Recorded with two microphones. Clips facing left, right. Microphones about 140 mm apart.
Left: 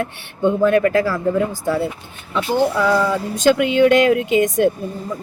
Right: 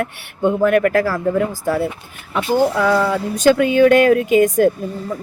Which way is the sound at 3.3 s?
20° left (ahead or behind).